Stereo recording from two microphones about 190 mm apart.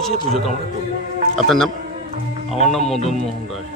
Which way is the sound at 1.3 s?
Centre (ahead or behind).